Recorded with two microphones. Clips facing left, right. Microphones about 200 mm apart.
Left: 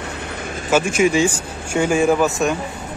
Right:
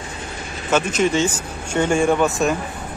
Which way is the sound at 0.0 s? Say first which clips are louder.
Left 3 dB; 60° left (ahead or behind).